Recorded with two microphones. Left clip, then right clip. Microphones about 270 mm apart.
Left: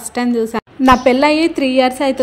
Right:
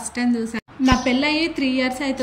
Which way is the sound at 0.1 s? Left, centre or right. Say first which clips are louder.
Left 8 dB; centre.